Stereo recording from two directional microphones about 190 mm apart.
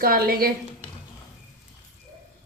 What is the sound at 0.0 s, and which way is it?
Speech, 50° right (ahead or behind).